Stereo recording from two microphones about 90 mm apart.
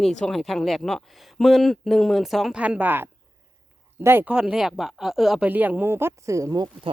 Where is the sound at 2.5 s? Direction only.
15° right (ahead or behind).